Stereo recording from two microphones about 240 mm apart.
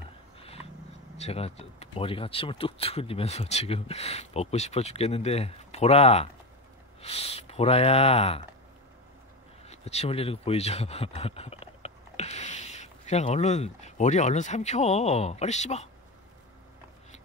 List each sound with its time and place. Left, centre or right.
1.1 s speech: left
9.7 s speech: left